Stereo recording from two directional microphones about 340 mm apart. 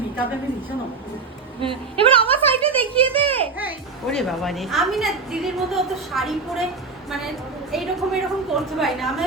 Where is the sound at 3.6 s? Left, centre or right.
Centre.